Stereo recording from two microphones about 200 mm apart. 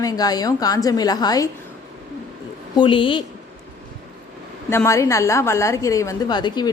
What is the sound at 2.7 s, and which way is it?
Speech, 25° left (ahead or behind).